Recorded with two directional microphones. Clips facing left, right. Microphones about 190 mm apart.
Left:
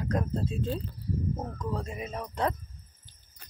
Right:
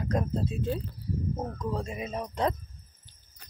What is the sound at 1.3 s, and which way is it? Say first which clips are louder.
Speech: right 2 dB; 10° right (ahead or behind).